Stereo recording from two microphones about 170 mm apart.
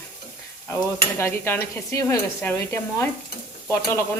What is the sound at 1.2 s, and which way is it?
Dishes, 15° left (ahead or behind).